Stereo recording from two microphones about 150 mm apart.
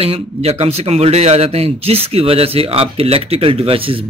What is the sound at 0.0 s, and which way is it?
Speech, 40° right (ahead or behind).